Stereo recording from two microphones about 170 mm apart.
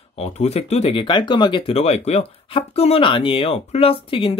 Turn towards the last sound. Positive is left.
turn(degrees=30)  # may be behind; listen again after turning